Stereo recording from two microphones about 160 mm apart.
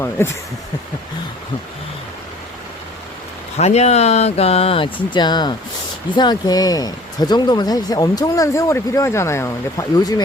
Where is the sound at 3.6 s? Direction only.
45° left (ahead or behind).